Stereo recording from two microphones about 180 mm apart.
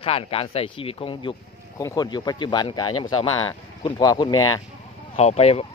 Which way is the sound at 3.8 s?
20° left (ahead or behind).